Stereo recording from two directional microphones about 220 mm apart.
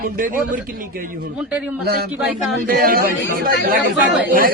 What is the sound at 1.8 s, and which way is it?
Speech, 45° right (ahead or behind).